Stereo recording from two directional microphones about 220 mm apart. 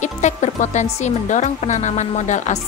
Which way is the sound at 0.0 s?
30° left (ahead or behind).